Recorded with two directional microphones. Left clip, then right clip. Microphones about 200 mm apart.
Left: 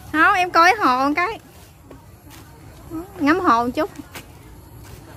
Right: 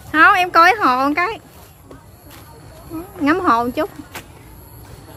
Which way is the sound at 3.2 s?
15° left (ahead or behind).